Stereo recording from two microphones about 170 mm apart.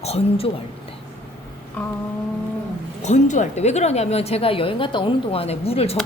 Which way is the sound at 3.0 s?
45° left (ahead or behind).